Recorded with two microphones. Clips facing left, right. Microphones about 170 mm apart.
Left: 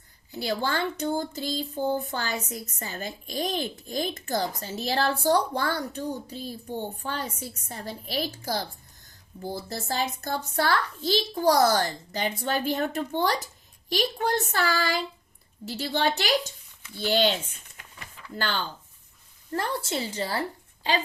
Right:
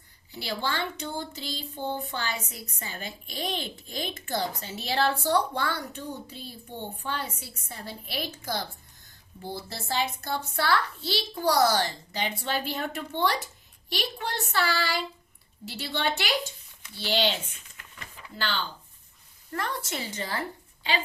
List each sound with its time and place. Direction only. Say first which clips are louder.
0.3 s a child's voice: left 4 dB; 45° left (ahead or behind)
18.3 s a child's voice: left 2 dB; 50° left (ahead or behind)
19.5 s speech: left 4 dB; 30° left (ahead or behind)